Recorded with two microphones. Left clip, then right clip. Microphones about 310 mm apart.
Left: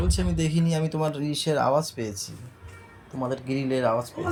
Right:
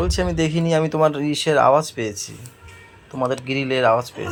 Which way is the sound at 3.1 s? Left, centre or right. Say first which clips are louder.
Right 7 dB; centre.